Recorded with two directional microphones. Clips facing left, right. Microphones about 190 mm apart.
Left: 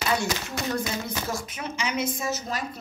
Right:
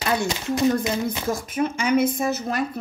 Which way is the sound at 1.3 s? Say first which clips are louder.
Right 8 dB; 50° right (ahead or behind).